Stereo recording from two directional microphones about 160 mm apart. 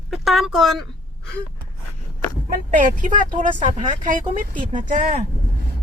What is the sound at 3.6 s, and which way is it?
Speech, 35° right (ahead or behind).